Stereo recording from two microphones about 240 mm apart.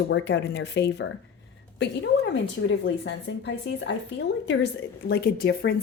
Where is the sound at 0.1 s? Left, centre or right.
Left.